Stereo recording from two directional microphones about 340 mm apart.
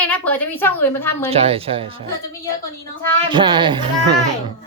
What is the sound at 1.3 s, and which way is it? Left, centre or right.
Speech, centre.